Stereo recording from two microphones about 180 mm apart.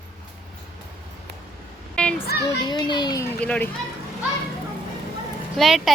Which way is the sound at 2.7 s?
25° left (ahead or behind).